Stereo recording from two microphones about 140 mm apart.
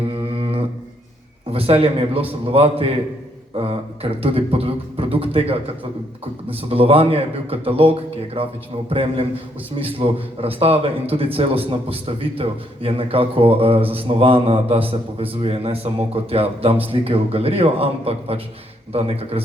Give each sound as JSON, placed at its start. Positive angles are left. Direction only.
{"t": 0.0, "sound": "music", "side_deg": -40}
{"t": 1.5, "sound": "a man's voice", "side_deg": -45}